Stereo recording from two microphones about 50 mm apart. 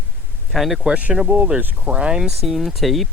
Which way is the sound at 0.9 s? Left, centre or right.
Right.